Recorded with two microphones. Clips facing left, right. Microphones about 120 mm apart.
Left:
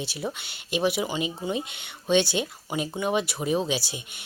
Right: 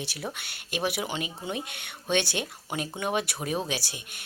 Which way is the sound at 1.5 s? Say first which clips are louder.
Left 4 dB; 55° right (ahead or behind).